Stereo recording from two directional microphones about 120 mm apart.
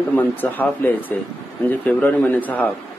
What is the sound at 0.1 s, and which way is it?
Speech, 15° left (ahead or behind).